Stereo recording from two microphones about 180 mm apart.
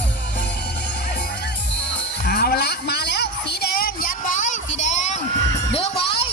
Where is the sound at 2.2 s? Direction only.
60° left (ahead or behind); by 5.2 s 40° left (ahead or behind).